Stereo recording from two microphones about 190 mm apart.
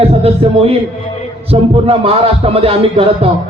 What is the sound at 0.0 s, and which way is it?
Speech, 30° right (ahead or behind).